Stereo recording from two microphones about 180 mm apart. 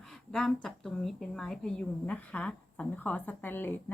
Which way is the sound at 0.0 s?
Centre (ahead or behind).